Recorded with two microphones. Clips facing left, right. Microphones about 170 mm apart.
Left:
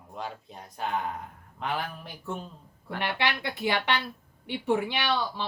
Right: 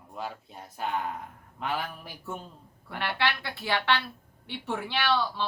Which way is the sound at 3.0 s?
15° left (ahead or behind).